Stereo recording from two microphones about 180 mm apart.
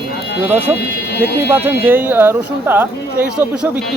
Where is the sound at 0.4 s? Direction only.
10° right (ahead or behind).